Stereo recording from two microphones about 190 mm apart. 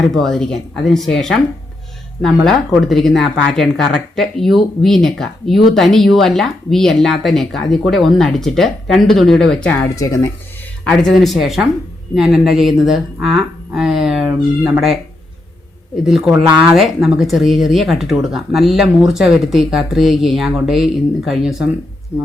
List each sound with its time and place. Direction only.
0.1 s speech: centre (ahead or behind)
9.9 s speech: 15° left (ahead or behind)
10.8 s speech: centre (ahead or behind)
16.0 s speech: centre (ahead or behind)